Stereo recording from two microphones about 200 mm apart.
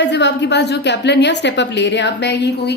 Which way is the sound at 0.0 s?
60° left (ahead or behind).